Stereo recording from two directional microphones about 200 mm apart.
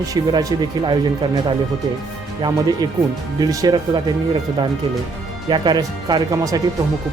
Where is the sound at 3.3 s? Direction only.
20° right (ahead or behind).